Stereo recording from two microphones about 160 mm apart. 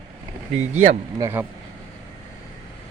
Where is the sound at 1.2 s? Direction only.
15° right (ahead or behind).